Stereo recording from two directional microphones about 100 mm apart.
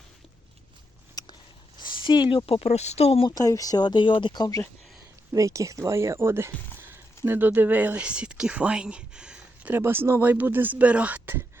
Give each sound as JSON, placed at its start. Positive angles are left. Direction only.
{"t": 1.2, "sound": "a sound", "side_deg": 40}
{"t": 1.8, "sound": "speech", "side_deg": 55}
{"t": 3.2, "sound": "speech", "side_deg": 35}
{"t": 5.3, "sound": "speech", "side_deg": -30}
{"t": 9.7, "sound": "speech", "side_deg": -20}